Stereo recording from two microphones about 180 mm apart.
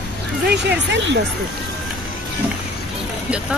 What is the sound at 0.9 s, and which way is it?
Speech, 85° right.